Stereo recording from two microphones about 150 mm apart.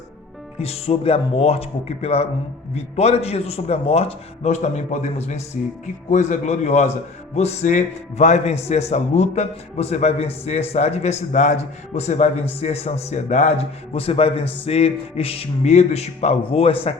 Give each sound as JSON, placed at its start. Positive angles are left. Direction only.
{"t": 0.6, "sound": "a man's voice", "side_deg": 40}